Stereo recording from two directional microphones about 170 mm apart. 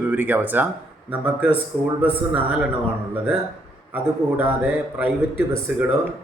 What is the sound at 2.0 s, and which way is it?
Speech, 10° right (ahead or behind).